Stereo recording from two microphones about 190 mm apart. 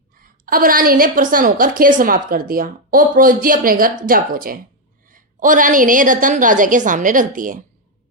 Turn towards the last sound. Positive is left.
turn(degrees=-45)  # may be behind; listen again after turning